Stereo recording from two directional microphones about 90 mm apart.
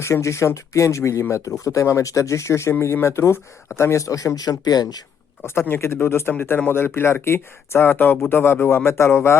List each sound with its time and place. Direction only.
0.0 s speech: 30° left (ahead or behind); by 5.0 s 45° left (ahead or behind)
5.4 s speech: 25° left (ahead or behind)